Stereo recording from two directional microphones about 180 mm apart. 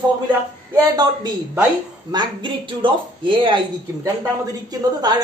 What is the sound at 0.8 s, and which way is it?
Speech, 25° right (ahead or behind).